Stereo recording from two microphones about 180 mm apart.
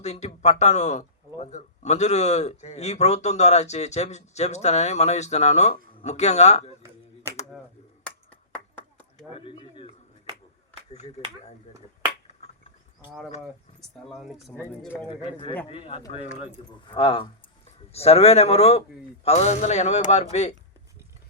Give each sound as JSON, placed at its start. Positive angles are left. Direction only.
{"t": 0.0, "sound": "a man's voice", "side_deg": 35}
{"t": 8.7, "sound": "chop", "side_deg": 10}
{"t": 9.3, "sound": "a sound", "side_deg": 30}
{"t": 10.9, "sound": "a man's voice", "side_deg": 35}
{"t": 12.4, "sound": "insect", "side_deg": 35}
{"t": 14.1, "sound": "speech", "side_deg": 0}
{"t": 14.5, "sound": "speech", "side_deg": 10}
{"t": 15.7, "sound": "a man's voice", "side_deg": 30}
{"t": 16.9, "sound": "a man's voice", "side_deg": 30}